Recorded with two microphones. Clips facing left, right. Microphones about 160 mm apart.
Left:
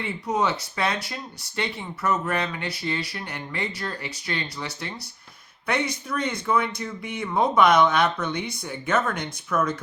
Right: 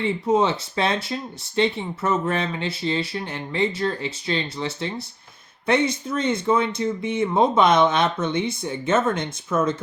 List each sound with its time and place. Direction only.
0.0 s speech: 25° right (ahead or behind)